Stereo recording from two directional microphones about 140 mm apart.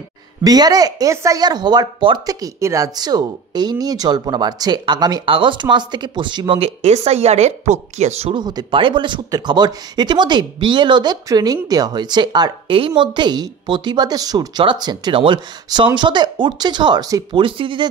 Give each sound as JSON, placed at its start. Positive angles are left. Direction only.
{"t": 0.4, "sound": "speech", "side_deg": -25}
{"t": 6.8, "sound": "speech", "side_deg": -50}
{"t": 8.4, "sound": "speech", "side_deg": -30}